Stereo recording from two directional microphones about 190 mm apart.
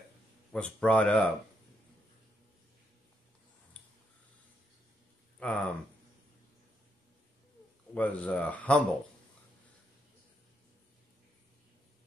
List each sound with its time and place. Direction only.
0.5 s speech: 5° left (ahead or behind)
3.8 s a sound: 10° left (ahead or behind)
5.4 s speech: 5° left (ahead or behind)
7.9 s speech: 5° left (ahead or behind)